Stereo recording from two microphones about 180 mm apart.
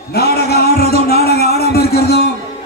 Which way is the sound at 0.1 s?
60° left (ahead or behind).